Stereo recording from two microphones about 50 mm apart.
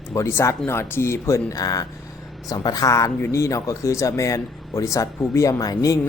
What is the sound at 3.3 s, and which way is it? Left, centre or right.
Speech, left.